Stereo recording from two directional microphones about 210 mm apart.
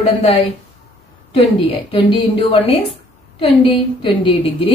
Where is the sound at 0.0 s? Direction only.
30° left (ahead or behind).